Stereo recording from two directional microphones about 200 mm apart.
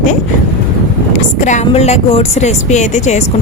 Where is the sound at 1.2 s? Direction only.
35° left (ahead or behind).